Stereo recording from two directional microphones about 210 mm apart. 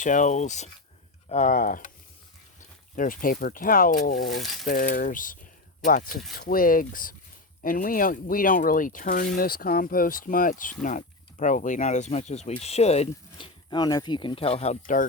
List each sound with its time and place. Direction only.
0.0 s speech: 35° left (ahead or behind)
4.4 s speech: centre (ahead or behind)
4.6 s speech: 40° left (ahead or behind)